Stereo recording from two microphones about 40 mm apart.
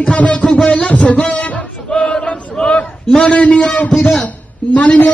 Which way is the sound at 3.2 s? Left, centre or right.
Left.